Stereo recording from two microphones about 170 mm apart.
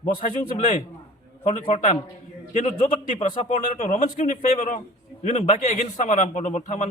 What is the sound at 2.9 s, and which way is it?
A man's voice, 50° left (ahead or behind).